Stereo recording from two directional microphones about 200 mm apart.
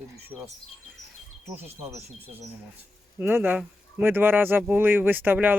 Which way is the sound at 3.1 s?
10° right (ahead or behind).